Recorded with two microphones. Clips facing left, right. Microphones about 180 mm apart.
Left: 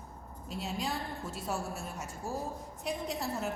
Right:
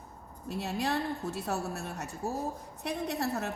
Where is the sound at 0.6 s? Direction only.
70° right (ahead or behind).